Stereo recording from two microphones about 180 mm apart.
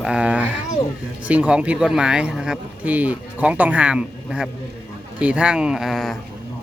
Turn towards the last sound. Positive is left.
turn(degrees=0)  # may be behind; listen again after turning